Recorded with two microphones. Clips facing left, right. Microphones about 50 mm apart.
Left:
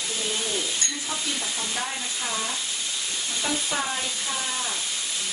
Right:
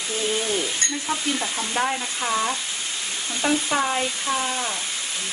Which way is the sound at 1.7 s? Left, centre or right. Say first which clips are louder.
Right 6 dB; right.